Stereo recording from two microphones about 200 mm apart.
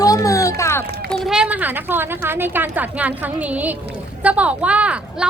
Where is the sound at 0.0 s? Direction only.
15° left (ahead or behind).